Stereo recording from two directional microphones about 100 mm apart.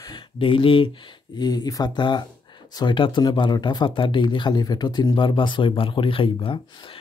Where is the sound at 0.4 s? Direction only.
60° left (ahead or behind).